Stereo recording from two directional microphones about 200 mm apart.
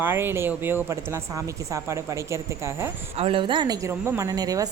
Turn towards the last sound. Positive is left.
turn(degrees=-20)  # may be behind; listen again after turning